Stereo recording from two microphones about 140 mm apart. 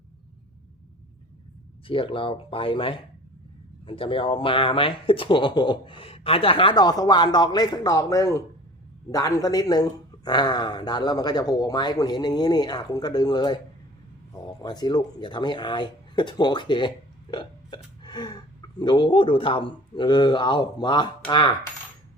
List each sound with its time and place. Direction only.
1.9 s speech: 40° left (ahead or behind)
14.6 s speech: 30° left (ahead or behind)